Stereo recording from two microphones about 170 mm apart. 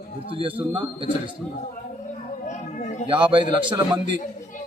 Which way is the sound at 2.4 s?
45° left (ahead or behind).